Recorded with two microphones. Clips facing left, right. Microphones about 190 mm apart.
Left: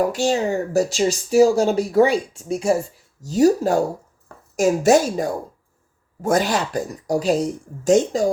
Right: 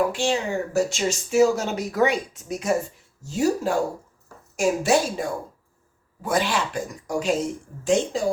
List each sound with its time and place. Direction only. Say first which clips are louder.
0.0 s speech: left 4 dB; 40° left (ahead or behind)